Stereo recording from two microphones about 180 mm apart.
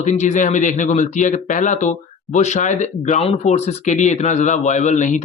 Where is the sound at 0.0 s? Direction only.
40° left (ahead or behind).